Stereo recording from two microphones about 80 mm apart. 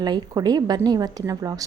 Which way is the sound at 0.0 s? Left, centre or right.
Right.